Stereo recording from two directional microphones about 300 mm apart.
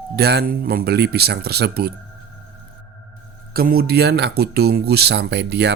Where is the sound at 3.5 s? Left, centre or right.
Right.